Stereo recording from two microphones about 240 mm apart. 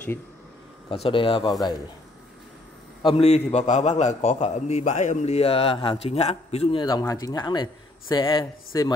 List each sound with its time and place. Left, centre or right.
0.8 s a man's voice: left
3.0 s a man's voice: left